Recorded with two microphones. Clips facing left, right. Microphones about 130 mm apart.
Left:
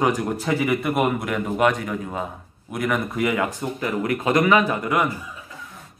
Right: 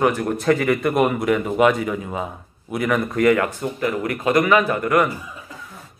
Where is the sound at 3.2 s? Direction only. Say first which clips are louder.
Right 7 dB; 15° left (ahead or behind).